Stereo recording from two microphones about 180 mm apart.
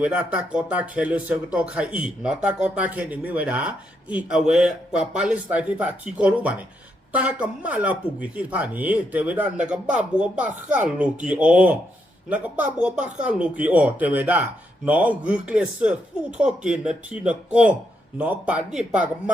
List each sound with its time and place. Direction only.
0.0 s speech: 5° right (ahead or behind)